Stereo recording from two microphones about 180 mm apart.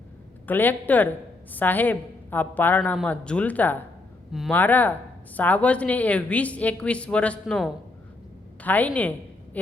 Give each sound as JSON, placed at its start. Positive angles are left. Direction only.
{"t": 0.4, "sound": "a woman's voice", "side_deg": 10}
{"t": 4.3, "sound": "speech", "side_deg": 0}
{"t": 4.5, "sound": "a woman's voice", "side_deg": 10}